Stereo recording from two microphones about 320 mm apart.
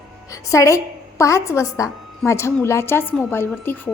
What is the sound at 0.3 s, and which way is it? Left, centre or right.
A woman's voice, centre.